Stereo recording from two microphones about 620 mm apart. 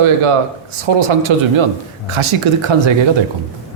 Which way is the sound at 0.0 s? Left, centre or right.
Right.